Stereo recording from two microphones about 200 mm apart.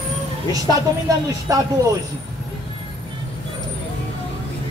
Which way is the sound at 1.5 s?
15° right (ahead or behind).